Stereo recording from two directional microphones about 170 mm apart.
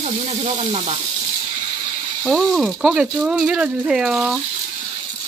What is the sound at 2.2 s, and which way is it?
Speech, centre (ahead or behind).